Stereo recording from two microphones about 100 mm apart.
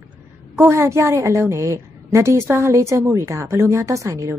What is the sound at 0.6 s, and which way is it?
A woman's voice, 25° right (ahead or behind).